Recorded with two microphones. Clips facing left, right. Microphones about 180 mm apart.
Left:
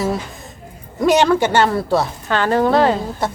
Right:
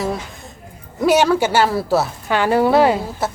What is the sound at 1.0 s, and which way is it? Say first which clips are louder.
A woman's voice: left 1 dB; 10° right (ahead or behind).